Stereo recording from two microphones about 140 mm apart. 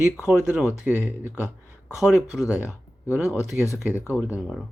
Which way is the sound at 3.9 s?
20° left (ahead or behind).